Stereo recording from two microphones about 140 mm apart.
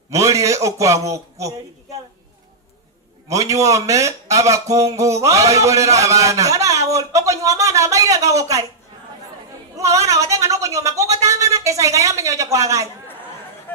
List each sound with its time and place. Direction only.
0.1 s a man's voice: 20° right (ahead or behind)
3.3 s speech: 25° right (ahead or behind)
9.8 s a sound: 20° right (ahead or behind)
11.2 s speech: 20° right (ahead or behind)
13.1 s chatter: 15° left (ahead or behind)